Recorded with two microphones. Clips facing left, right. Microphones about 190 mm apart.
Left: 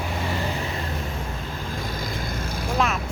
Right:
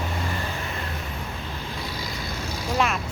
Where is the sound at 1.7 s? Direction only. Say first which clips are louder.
Left 4 dB; 50° left (ahead or behind).